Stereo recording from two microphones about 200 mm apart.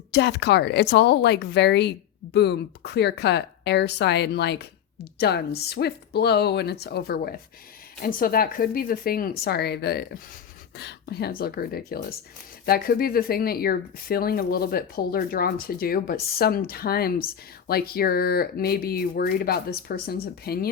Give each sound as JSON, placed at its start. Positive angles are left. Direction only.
{"t": 0.1, "sound": "speech", "side_deg": 60}